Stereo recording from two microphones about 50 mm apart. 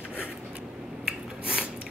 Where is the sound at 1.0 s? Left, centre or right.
Centre.